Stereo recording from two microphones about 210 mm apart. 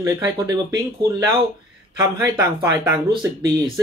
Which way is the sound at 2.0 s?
15° right (ahead or behind).